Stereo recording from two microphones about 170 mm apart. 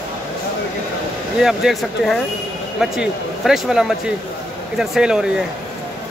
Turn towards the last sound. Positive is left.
turn(degrees=-5)  # may be behind; listen again after turning